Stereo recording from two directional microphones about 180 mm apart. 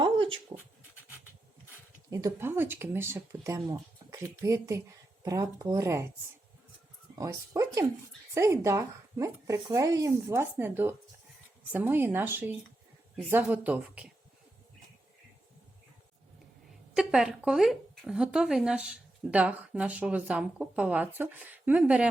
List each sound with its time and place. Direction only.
0.0 s dog: 30° right (ahead or behind)
2.0 s speech: 20° right (ahead or behind)
7.2 s speech: 15° right (ahead or behind)
16.9 s speech: 5° right (ahead or behind)